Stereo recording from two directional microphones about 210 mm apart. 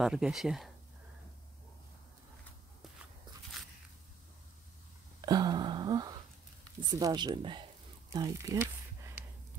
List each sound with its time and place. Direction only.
0.0 s speech: 5° right (ahead or behind)
5.2 s a sound: 20° right (ahead or behind)
6.8 s speech: 15° right (ahead or behind)